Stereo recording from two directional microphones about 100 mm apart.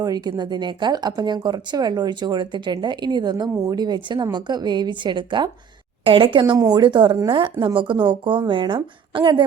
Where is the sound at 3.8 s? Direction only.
45° right (ahead or behind).